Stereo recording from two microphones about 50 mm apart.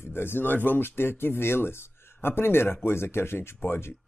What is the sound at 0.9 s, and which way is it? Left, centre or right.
Speech, left.